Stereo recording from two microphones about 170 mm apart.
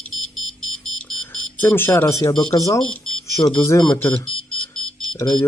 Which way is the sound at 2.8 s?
5° left (ahead or behind).